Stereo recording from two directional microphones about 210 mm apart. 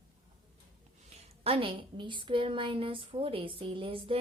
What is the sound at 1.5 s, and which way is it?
Speech, 25° right (ahead or behind).